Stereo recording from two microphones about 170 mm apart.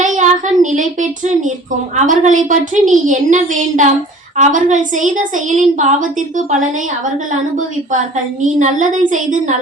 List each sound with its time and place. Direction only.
0.0 s a woman's voice: 45° right (ahead or behind)
7.9 s a woman's voice: 45° right (ahead or behind)